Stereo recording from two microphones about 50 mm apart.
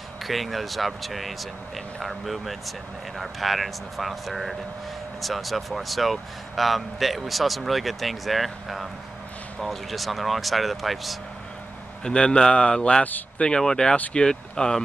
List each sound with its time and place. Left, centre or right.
0.2 s speech: centre
12.0 s speech: centre